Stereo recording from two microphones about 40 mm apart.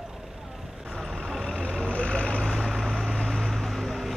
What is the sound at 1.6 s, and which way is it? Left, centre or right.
Vehicle, left.